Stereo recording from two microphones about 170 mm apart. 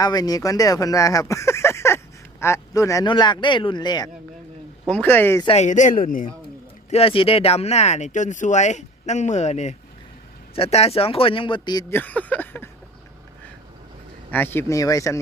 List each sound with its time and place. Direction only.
0.0 s speech: 25° left (ahead or behind)
4.9 s speech: 10° left (ahead or behind)
5.5 s a man's voice: 45° left (ahead or behind)
6.9 s speech: 35° left (ahead or behind)
11.9 s speech: 10° left (ahead or behind)
14.3 s speech: 10° left (ahead or behind)